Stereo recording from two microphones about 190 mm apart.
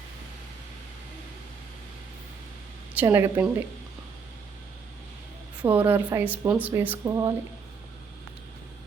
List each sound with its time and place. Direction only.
2.9 s a woman's voice: 10° right (ahead or behind)
5.6 s a woman's voice: 10° right (ahead or behind)